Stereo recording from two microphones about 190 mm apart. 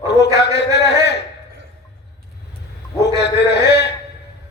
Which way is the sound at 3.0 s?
60° left (ahead or behind).